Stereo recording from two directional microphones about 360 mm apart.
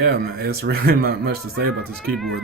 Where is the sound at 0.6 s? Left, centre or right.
Right.